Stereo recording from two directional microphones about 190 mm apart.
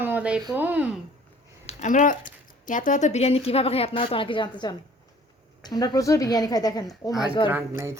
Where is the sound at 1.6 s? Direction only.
40° left (ahead or behind); by 7.5 s 25° left (ahead or behind).